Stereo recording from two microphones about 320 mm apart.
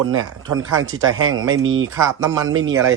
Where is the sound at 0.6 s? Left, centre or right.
Right.